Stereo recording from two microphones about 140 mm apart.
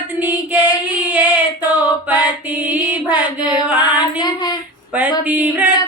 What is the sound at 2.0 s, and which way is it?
Mantra, 10° right (ahead or behind).